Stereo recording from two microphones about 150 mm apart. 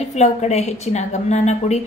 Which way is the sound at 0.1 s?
45° left (ahead or behind).